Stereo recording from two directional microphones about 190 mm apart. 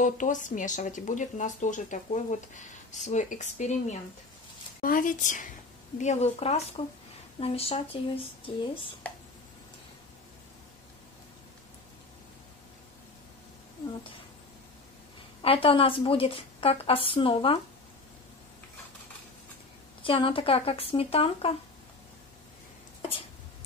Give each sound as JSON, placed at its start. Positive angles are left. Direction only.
{"t": 0.0, "sound": "a woman's voice", "side_deg": 40}
{"t": 15.4, "sound": "a woman's voice", "side_deg": 30}
{"t": 20.0, "sound": "a woman's voice", "side_deg": 25}